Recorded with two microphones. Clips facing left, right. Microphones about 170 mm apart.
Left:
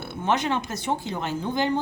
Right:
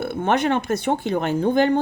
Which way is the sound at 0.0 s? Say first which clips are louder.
Right 5 dB; 55° right (ahead or behind).